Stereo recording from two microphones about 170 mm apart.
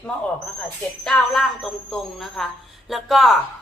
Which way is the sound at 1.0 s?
5° left (ahead or behind).